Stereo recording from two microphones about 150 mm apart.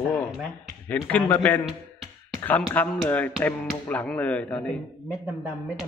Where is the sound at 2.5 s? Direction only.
10° left (ahead or behind).